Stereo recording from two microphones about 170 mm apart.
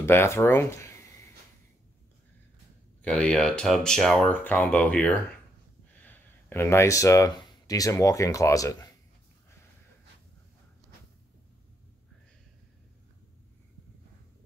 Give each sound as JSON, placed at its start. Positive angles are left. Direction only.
{"t": 0.0, "sound": "speech", "side_deg": 15}
{"t": 3.0, "sound": "speech", "side_deg": 5}